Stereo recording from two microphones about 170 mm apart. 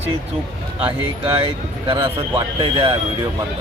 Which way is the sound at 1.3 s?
30° right (ahead or behind).